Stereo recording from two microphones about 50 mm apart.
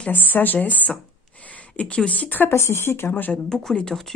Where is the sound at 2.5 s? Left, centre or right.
Left.